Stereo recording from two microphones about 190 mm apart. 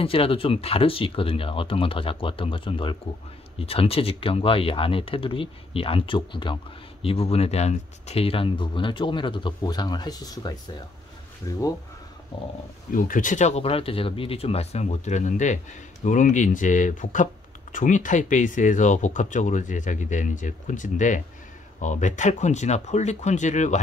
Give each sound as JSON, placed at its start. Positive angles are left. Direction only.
{"t": 0.0, "sound": "speech", "side_deg": 30}
{"t": 12.9, "sound": "speech", "side_deg": 45}